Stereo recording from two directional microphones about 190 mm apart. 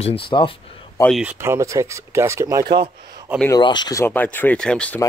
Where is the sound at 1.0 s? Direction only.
5° right (ahead or behind); by 2.7 s 20° right (ahead or behind).